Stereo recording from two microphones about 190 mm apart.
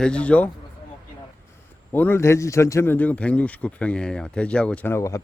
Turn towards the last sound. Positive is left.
turn(degrees=15)  # may be behind; listen again after turning